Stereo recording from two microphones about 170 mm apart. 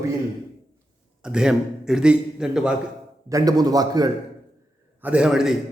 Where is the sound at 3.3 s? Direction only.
20° right (ahead or behind).